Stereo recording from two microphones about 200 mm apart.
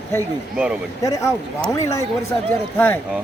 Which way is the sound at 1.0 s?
15° left (ahead or behind).